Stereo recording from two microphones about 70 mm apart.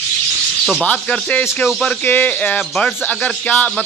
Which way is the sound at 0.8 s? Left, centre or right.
Left.